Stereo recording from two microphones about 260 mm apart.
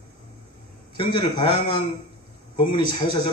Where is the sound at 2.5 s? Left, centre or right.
Centre.